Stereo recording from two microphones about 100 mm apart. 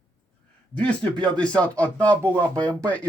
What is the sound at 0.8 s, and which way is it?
Speech, 10° left (ahead or behind).